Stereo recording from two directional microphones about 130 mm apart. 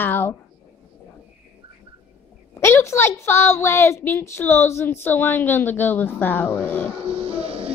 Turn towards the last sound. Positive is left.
turn(degrees=-50)  # may be behind; listen again after turning